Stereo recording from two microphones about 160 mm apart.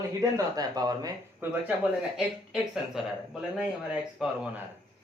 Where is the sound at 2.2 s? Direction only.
5° right (ahead or behind).